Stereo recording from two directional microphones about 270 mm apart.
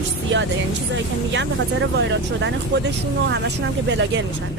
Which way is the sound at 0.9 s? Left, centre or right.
Right.